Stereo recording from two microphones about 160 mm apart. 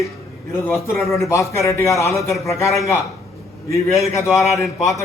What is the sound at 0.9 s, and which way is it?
A man's voice, 20° left (ahead or behind).